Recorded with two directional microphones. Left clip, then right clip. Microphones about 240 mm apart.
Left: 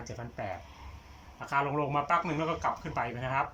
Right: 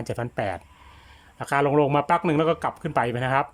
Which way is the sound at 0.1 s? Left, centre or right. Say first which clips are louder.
Right 11 dB; right.